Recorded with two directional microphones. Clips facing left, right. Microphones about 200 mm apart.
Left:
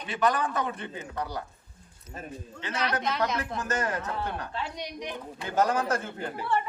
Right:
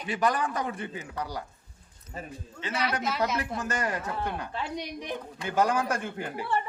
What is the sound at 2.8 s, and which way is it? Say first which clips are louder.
Speech: left 1 dB; 5° right (ahead or behind).